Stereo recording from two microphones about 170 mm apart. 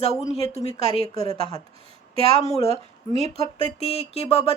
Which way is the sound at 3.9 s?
35° left (ahead or behind).